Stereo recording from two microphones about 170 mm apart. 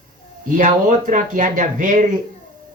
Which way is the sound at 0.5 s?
50° right (ahead or behind).